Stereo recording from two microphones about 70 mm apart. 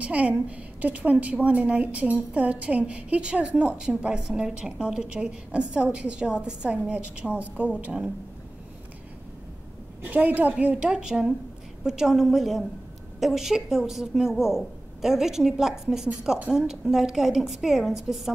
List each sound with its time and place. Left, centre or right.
0.0 s a woman's voice: centre
10.0 s a woman's voice: right; by 18.3 s centre